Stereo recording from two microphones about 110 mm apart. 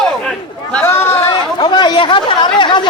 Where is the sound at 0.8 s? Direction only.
20° left (ahead or behind).